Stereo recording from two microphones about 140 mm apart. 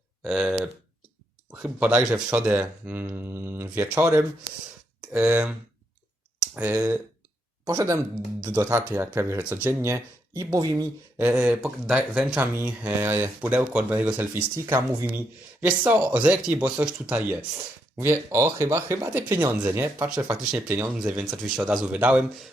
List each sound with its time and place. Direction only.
0.3 s speech: 5° right (ahead or behind); by 10.8 s 25° right (ahead or behind)
11.3 s speech: 10° right (ahead or behind)